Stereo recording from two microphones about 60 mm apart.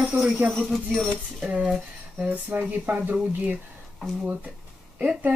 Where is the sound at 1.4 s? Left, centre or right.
Centre.